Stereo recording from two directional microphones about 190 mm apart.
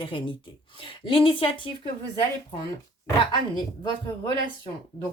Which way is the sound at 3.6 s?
25° left (ahead or behind).